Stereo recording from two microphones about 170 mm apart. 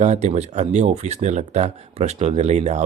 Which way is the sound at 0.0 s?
45° right (ahead or behind).